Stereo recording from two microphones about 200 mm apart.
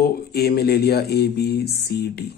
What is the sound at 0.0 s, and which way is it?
Speech, 50° left (ahead or behind).